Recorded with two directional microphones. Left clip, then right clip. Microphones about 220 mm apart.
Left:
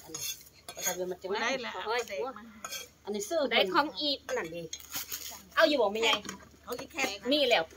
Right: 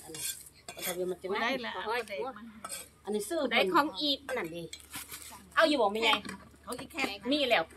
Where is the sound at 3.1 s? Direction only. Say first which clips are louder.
Left 2 dB; 20° right (ahead or behind).